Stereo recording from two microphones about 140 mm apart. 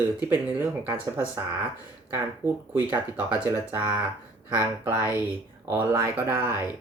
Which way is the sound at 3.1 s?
15° right (ahead or behind).